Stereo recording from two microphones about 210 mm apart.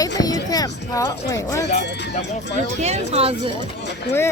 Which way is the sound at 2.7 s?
30° right (ahead or behind).